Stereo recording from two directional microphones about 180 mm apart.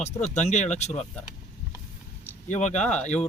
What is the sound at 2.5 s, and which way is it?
Speech, 40° left (ahead or behind).